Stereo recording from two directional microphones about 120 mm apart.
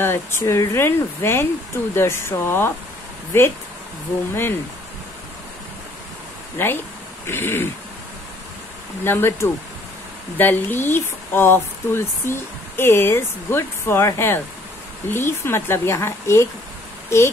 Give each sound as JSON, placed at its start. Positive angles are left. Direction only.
{"t": 0.0, "sound": "speech", "side_deg": 20}
{"t": 6.6, "sound": "speech", "side_deg": 20}
{"t": 9.0, "sound": "speech", "side_deg": 20}